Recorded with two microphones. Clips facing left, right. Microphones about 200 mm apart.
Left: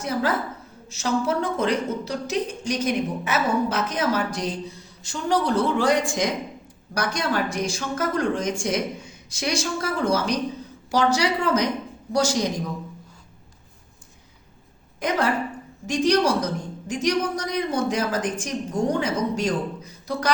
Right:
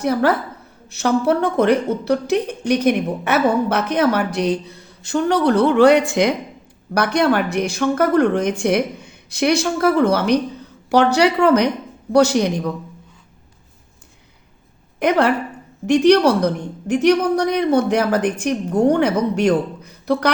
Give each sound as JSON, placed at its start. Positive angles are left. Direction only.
{"t": 0.0, "sound": "speech", "side_deg": -65}
{"t": 14.9, "sound": "a woman's voice", "side_deg": -65}